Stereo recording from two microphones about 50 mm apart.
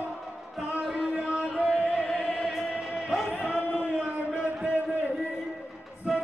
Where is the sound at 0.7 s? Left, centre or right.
Centre.